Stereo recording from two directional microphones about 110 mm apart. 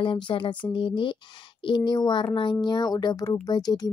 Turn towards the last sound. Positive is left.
turn(degrees=35)  # may be behind; listen again after turning